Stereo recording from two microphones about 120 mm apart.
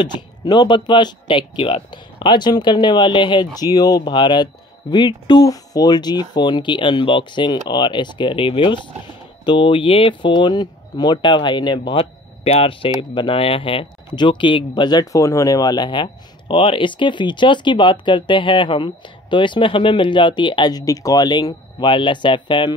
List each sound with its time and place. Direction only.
0.0 s speech: 40° left (ahead or behind)
12.0 s speech: 55° left (ahead or behind); by 22.8 s 40° left (ahead or behind)